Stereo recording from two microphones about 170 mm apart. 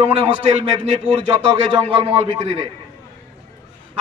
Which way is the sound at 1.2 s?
30° right (ahead or behind).